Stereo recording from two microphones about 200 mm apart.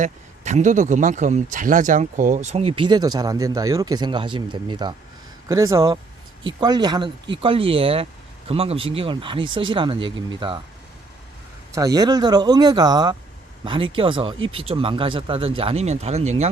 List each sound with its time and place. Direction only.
0.0 s speech: 35° right (ahead or behind)
11.7 s speech: 20° right (ahead or behind); by 16.5 s 35° right (ahead or behind)